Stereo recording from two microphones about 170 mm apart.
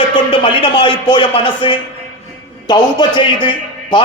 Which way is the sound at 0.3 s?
30° left (ahead or behind).